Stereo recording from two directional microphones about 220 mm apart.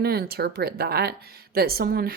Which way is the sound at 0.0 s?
45° right (ahead or behind).